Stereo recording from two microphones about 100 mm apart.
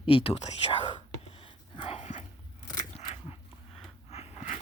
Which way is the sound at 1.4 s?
70° left (ahead or behind).